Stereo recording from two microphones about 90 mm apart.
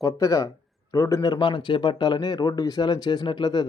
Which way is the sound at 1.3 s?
60° left (ahead or behind).